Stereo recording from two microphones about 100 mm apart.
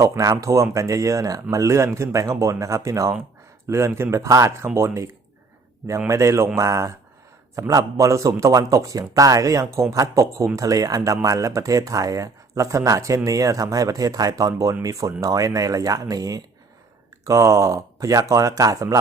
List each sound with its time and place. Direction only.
0.0 s a man's voice: 30° right (ahead or behind)
6.1 s a man's voice: 30° right (ahead or behind)